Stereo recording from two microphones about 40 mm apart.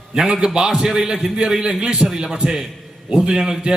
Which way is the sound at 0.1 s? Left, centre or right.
Centre.